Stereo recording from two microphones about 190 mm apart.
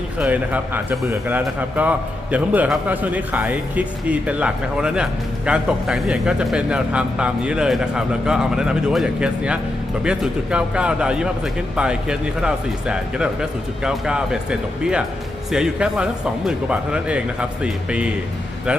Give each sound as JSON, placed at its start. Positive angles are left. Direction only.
{"t": 0.2, "sound": "a man's voice", "side_deg": -10}